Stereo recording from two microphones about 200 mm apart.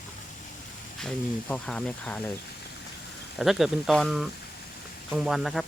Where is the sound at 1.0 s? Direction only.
5° left (ahead or behind).